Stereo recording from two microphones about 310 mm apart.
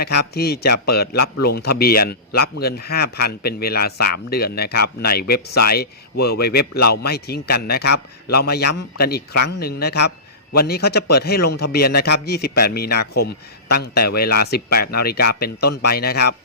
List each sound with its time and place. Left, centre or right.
0.2 s speech: left
1.1 s a man's voice: left
1.5 s speech: left
9.3 s a man's voice: left
9.6 s speech: left